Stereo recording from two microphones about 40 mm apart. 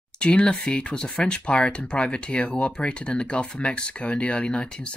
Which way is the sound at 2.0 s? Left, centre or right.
Centre.